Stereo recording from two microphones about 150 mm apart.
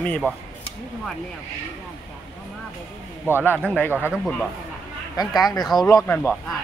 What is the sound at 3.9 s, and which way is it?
Speech, 10° right (ahead or behind).